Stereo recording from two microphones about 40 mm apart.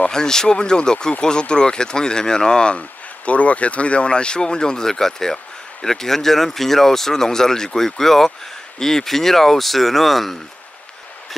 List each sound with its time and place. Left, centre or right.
0.1 s speech: centre